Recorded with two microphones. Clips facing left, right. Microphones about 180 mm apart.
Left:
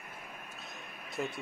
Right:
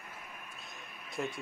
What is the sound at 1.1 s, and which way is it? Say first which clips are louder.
Speech: even; centre (ahead or behind).